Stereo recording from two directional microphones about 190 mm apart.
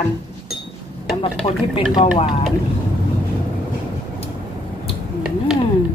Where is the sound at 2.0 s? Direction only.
25° left (ahead or behind).